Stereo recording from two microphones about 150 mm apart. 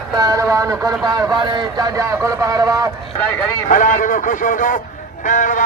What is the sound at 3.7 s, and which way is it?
Speech, 65° left (ahead or behind).